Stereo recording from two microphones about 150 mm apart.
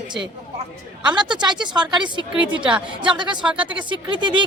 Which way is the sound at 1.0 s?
30° right (ahead or behind).